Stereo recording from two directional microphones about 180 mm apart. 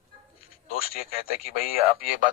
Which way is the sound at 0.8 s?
55° left (ahead or behind).